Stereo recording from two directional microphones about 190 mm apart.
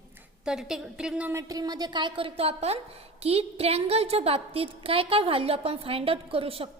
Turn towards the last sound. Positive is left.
turn(degrees=-30)  # may be behind; listen again after turning